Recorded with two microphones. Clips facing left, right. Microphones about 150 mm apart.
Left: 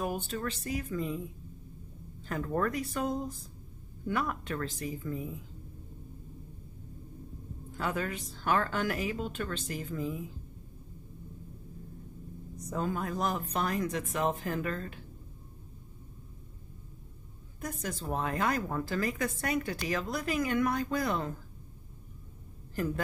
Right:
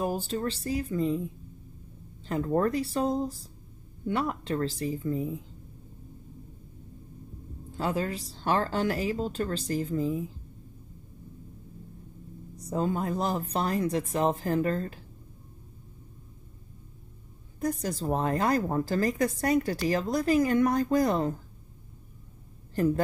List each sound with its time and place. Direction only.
0.0 s a woman's voice: 30° right (ahead or behind)
2.2 s a woman's voice: 30° right (ahead or behind)
7.7 s a woman's voice: 30° right (ahead or behind)
12.5 s a woman's voice: 30° right (ahead or behind)
17.6 s a woman's voice: 35° right (ahead or behind)